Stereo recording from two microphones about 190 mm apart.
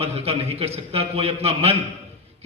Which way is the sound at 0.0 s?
35° right (ahead or behind).